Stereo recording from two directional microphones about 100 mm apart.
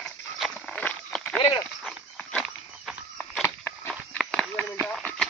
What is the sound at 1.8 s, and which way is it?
Walk, 10° left (ahead or behind).